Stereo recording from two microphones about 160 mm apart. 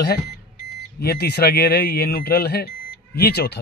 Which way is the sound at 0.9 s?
85° left.